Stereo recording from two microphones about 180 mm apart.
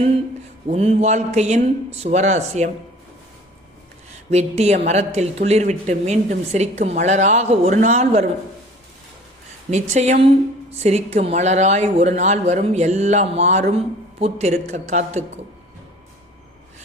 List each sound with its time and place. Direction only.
0.7 s speech: 35° right (ahead or behind)
4.3 s speech: 35° right (ahead or behind)
9.6 s speech: 40° right (ahead or behind)